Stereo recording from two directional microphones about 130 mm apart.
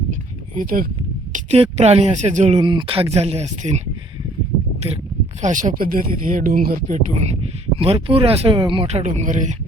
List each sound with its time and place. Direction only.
0.5 s speech: 90° right
1.3 s speech: 55° right (ahead or behind)
2.6 s speech: 40° right (ahead or behind); by 3.8 s 60° right (ahead or behind)
5.4 s speech: 80° right
7.8 s speech: 50° right (ahead or behind)
8.9 s speech: 60° right (ahead or behind)